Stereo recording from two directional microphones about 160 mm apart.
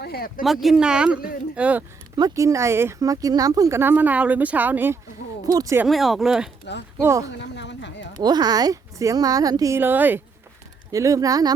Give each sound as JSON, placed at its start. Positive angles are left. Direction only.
{"t": 0.0, "sound": "speech", "side_deg": 75}
{"t": 0.4, "sound": "speech", "side_deg": 0}
{"t": 2.1, "sound": "a woman's voice", "side_deg": -20}
{"t": 5.8, "sound": "speech", "side_deg": 0}
{"t": 7.0, "sound": "a woman's voice", "side_deg": -20}
{"t": 7.5, "sound": "a sound", "side_deg": 90}
{"t": 8.2, "sound": "a woman's voice", "side_deg": -25}